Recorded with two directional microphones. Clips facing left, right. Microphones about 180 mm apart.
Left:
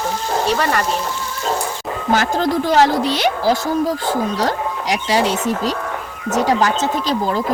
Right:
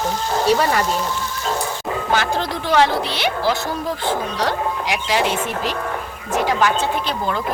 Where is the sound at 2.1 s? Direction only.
45° left (ahead or behind).